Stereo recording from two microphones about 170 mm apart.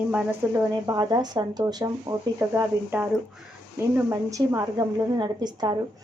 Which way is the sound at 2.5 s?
10° right (ahead or behind).